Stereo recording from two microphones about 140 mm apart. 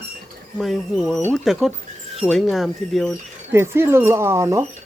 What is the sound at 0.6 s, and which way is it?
Speech, centre (ahead or behind).